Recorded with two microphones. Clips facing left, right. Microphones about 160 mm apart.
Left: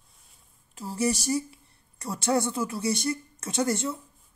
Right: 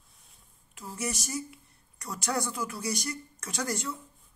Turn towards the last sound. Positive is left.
turn(degrees=25)  # may be behind; listen again after turning